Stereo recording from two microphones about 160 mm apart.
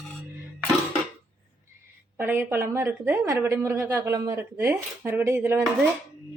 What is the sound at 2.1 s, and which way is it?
A woman's voice, 15° right (ahead or behind).